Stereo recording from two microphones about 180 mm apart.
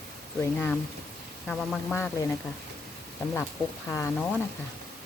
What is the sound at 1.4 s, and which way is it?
Speech, centre (ahead or behind).